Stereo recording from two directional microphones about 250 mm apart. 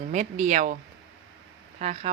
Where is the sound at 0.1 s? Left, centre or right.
Right.